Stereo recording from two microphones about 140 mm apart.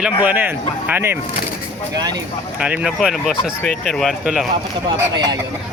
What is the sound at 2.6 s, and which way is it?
Speech, 5° right (ahead or behind).